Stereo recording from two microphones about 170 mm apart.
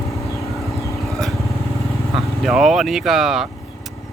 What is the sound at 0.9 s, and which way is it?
Vehicle, centre (ahead or behind).